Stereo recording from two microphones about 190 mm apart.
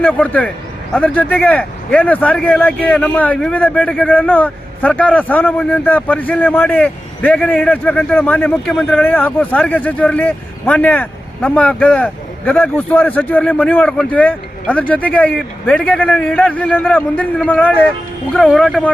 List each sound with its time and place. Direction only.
0.0 s speech: 10° left (ahead or behind)